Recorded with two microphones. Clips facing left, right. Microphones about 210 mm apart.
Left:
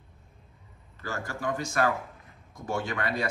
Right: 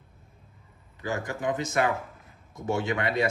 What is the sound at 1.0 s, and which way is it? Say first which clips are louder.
A man's voice: right 3 dB; 15° right (ahead or behind).